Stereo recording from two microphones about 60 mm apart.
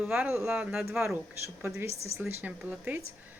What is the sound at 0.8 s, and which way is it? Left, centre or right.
Speech, right.